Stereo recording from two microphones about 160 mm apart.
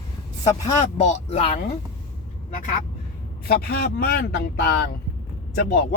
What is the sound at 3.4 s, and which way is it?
Speech, 70° left (ahead or behind).